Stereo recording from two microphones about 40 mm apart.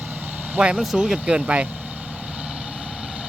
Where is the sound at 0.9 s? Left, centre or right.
Centre.